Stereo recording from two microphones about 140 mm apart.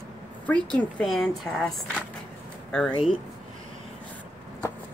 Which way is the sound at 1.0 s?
Centre (ahead or behind).